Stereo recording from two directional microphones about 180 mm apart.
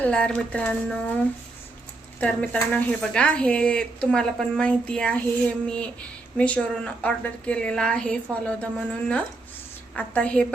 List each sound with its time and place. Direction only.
0.0 s a woman's voice: 5° left (ahead or behind)
2.2 s a woman's voice: 5° left (ahead or behind)